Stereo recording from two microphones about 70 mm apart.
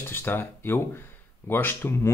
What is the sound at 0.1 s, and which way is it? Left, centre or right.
Speech, left.